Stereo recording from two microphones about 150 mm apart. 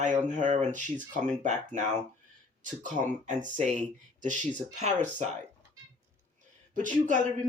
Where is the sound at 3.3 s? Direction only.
55° right (ahead or behind).